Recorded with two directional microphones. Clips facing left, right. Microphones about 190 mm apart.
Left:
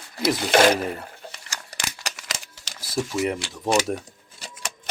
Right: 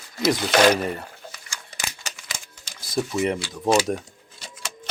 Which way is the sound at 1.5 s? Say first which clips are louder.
Even; 75° left (ahead or behind).